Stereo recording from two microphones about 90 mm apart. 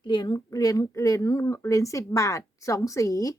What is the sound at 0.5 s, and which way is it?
A woman's voice, 40° left (ahead or behind).